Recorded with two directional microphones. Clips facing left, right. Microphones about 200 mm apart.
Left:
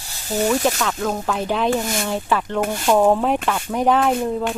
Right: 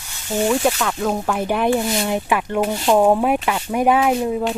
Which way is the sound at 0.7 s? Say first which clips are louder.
Right 1 dB; 10° right (ahead or behind).